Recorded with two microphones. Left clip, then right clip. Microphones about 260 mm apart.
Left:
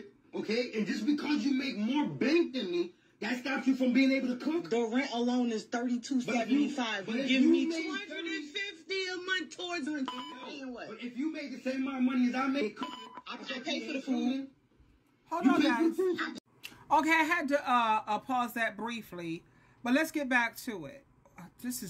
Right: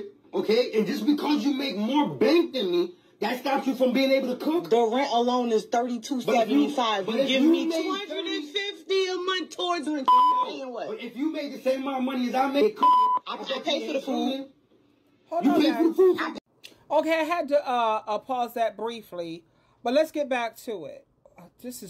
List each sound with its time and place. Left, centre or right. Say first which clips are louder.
0.3 s speech: right 10 dB; right
17.6 s speech: right 3 dB; left